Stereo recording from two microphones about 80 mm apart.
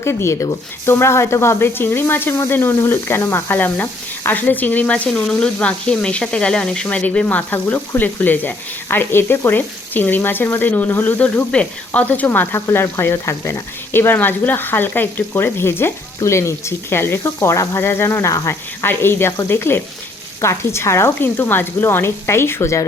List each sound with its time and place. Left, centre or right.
0.0 s speech: left
12.5 s speech: left